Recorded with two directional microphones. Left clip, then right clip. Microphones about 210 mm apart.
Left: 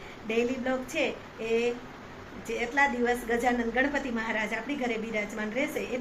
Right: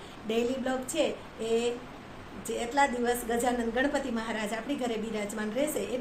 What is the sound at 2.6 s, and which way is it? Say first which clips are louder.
A woman's voice: left 1 dB; 15° right (ahead or behind).